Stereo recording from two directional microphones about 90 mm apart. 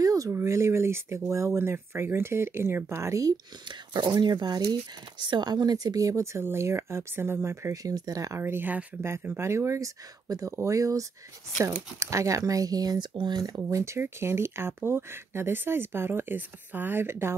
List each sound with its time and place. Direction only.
0.0 s a sound: 40° right (ahead or behind)
0.3 s speech: 30° right (ahead or behind)
3.9 s speech: 55° right (ahead or behind); by 7.8 s 30° right (ahead or behind)
7.8 s speech: 45° right (ahead or behind)
8.4 s speech: 25° right (ahead or behind); by 13.6 s 50° right (ahead or behind)
13.7 s speech: 35° right (ahead or behind)